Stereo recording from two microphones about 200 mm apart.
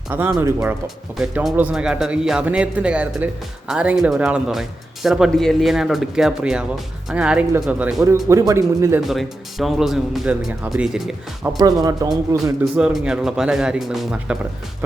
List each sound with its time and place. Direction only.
0.1 s speech: 10° right (ahead or behind)
9.0 s speech: centre (ahead or behind)
11.5 s speech: 20° right (ahead or behind)
12.8 s speech: 5° right (ahead or behind)